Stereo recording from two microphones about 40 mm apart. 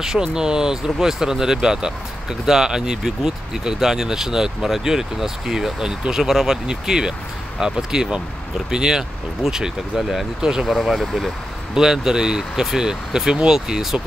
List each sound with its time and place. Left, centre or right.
0.0 s speech: centre
11.0 s speech: centre
11.7 s speech: centre